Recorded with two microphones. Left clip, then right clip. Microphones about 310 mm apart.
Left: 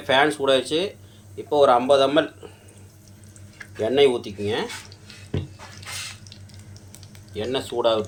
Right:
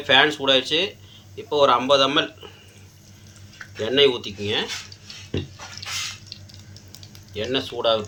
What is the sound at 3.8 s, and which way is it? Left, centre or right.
Speech, centre.